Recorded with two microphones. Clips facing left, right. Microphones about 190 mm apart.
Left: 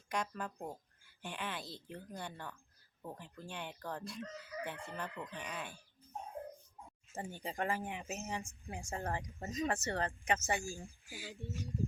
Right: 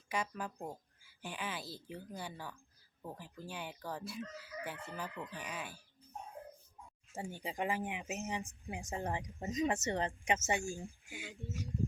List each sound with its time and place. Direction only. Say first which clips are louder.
0.1 s speech: even; 5° right (ahead or behind)
7.2 s speech: right 1 dB; 10° right (ahead or behind)